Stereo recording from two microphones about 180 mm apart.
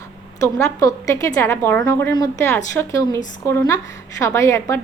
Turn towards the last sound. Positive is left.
turn(degrees=15)  # may be behind; listen again after turning